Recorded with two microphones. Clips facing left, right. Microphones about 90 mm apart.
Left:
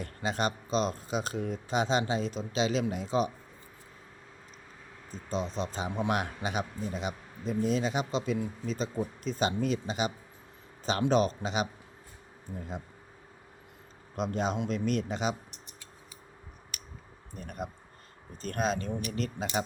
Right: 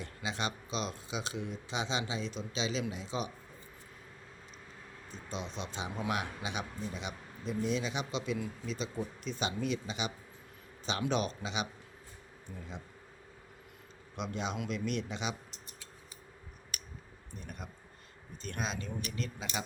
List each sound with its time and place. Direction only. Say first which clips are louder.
0.0 s speech: left 6 dB; 45° left (ahead or behind)
5.1 s speech: left 8 dB; 40° left (ahead or behind)
11.1 s speech: left 9 dB; 40° left (ahead or behind)
14.2 s speech: left 6 dB; 45° left (ahead or behind)
17.3 s speech: left 8 dB; 50° left (ahead or behind)